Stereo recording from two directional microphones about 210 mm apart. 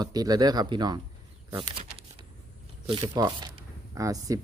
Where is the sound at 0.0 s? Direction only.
20° right (ahead or behind).